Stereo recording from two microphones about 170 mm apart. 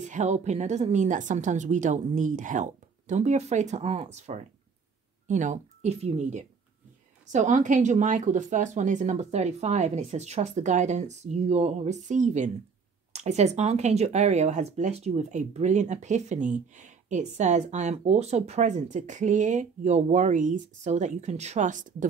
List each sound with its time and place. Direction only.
0.0 s speech: 45° right (ahead or behind)